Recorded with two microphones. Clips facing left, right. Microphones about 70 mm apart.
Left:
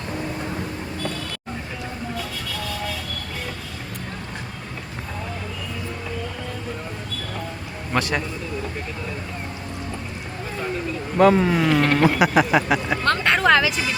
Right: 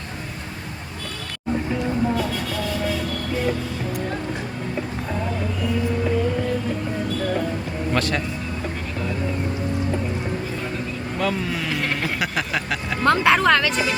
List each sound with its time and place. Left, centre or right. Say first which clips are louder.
7.9 s speech: left 1 dB; centre
11.2 s speech: left 9 dB; left
11.6 s speech: left 7 dB; centre
12.2 s speech: left 7 dB; centre
13.0 s speech: right 7 dB; centre